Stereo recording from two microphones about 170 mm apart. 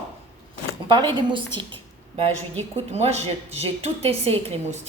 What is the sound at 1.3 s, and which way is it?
A woman's voice, 30° right (ahead or behind).